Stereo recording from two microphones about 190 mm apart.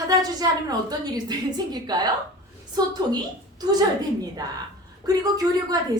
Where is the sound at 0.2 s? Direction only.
20° right (ahead or behind).